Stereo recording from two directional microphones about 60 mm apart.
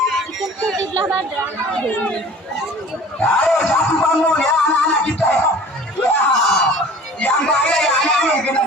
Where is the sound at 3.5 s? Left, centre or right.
Centre.